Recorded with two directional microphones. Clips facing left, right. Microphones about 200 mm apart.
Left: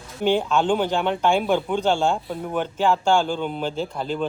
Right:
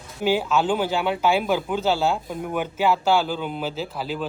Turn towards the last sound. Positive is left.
turn(degrees=-5)  # may be behind; listen again after turning